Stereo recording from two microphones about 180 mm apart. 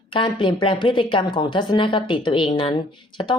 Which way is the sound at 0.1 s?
30° left (ahead or behind).